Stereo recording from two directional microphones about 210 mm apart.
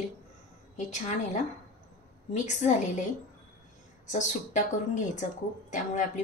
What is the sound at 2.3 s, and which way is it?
Speech, 35° left (ahead or behind).